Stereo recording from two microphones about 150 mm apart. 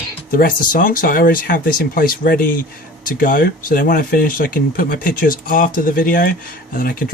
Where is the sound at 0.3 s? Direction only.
75° left (ahead or behind).